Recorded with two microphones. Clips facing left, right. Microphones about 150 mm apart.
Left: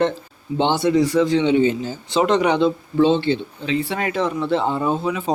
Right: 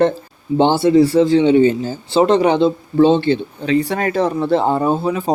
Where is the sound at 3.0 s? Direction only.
45° right (ahead or behind).